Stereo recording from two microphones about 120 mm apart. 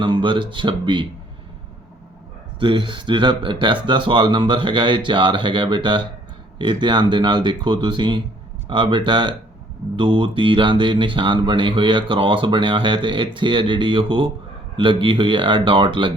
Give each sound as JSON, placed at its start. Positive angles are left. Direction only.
{"t": 0.0, "sound": "speech", "side_deg": -40}
{"t": 2.6, "sound": "speech", "side_deg": -40}